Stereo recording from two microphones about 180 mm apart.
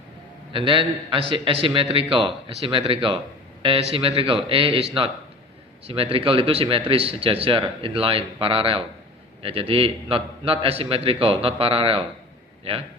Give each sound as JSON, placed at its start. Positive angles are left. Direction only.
{"t": 0.5, "sound": "a man's voice", "side_deg": -30}
{"t": 5.9, "sound": "speech", "side_deg": -30}